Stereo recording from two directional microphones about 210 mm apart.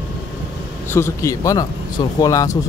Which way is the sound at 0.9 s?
10° left (ahead or behind).